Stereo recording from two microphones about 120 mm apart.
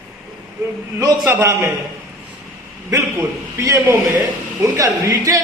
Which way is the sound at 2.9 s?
25° right (ahead or behind).